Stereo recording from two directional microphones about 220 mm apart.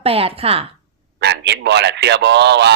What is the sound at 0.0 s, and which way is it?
Speech, 25° right (ahead or behind).